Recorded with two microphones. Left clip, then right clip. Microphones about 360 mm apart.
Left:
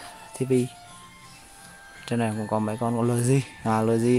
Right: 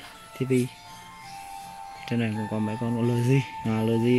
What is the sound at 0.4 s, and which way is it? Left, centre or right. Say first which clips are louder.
Speech: left 2 dB; left.